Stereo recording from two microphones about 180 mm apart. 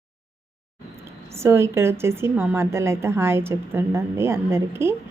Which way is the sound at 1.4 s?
15° right (ahead or behind).